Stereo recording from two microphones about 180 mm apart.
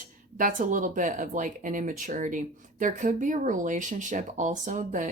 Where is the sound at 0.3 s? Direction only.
45° right (ahead or behind).